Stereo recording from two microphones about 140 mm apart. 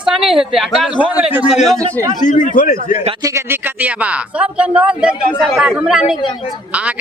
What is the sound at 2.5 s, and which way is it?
Speech, 70° left (ahead or behind).